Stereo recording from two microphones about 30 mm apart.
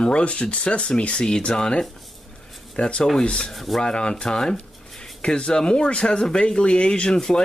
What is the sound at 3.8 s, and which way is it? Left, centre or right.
Speech, left.